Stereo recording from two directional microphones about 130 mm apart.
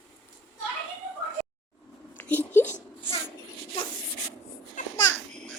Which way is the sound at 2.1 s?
15° left (ahead or behind).